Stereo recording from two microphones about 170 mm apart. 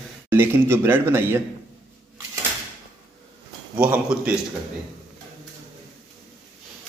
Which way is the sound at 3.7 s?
10° right (ahead or behind).